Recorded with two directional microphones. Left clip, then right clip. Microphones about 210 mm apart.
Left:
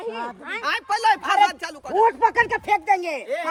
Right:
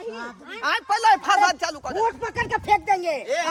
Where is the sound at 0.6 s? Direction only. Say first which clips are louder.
Right 1 dB; 10° right (ahead or behind).